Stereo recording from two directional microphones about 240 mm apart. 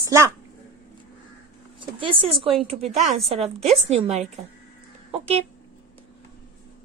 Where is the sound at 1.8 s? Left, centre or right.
Right.